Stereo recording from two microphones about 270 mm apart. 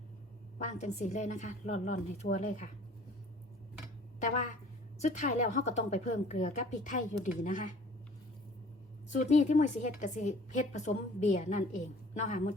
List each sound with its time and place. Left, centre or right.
0.6 s a woman's voice: left
4.9 s a woman's voice: left
9.1 s a woman's voice: left